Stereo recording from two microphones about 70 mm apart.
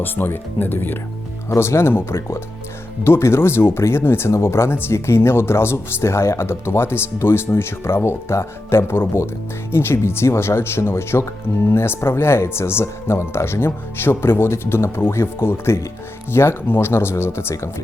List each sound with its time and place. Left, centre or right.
0.0 s speech: left
1.5 s speech: left